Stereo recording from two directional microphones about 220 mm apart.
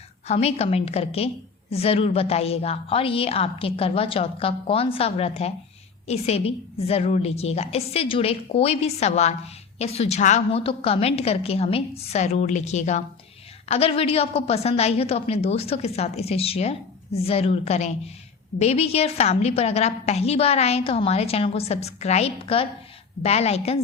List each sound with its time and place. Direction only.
0.3 s a woman's voice: 30° left (ahead or behind)